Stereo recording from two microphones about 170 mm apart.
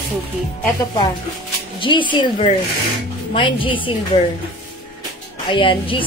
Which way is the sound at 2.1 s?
30° left (ahead or behind).